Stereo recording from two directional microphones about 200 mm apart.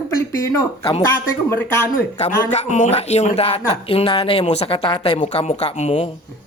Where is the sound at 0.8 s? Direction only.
30° left (ahead or behind).